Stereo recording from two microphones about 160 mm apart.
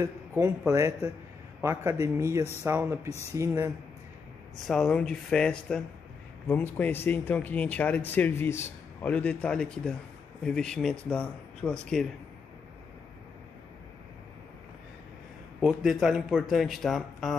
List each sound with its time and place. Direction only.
0.0 s speech: 15° right (ahead or behind)
4.6 s speech: 5° left (ahead or behind)
15.6 s speech: 5° right (ahead or behind)